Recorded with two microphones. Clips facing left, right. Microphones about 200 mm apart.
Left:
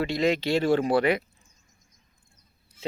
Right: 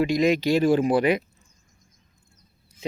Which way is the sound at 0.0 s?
15° right (ahead or behind).